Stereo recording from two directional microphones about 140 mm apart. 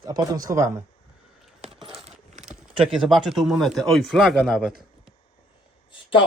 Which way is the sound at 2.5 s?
5° right (ahead or behind).